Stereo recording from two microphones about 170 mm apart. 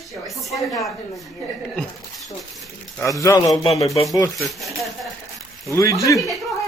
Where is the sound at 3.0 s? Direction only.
20° left (ahead or behind).